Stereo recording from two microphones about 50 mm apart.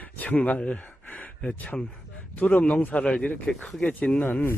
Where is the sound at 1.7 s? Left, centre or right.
Left.